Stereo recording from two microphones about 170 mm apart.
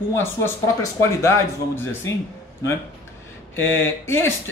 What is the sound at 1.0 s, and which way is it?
Speech, 15° left (ahead or behind).